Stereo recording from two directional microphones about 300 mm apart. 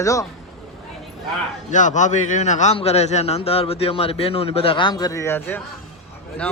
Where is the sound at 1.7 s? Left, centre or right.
Left.